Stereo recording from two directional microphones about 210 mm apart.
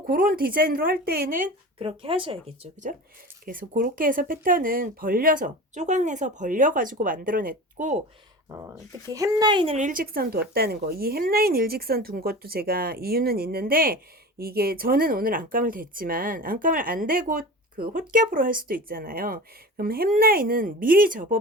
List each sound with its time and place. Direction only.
0.1 s speech: 40° right (ahead or behind)
1.8 s speech: 25° right (ahead or behind)
3.4 s speech: 40° right (ahead or behind)
8.4 s speech: 15° right (ahead or behind); by 21.3 s 40° right (ahead or behind)